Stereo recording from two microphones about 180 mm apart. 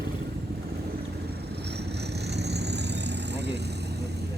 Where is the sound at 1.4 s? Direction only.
65° right (ahead or behind).